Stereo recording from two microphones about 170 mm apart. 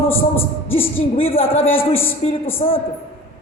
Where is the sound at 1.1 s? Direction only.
35° left (ahead or behind).